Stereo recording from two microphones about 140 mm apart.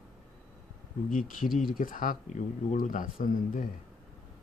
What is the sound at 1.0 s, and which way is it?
Speech, 75° left (ahead or behind).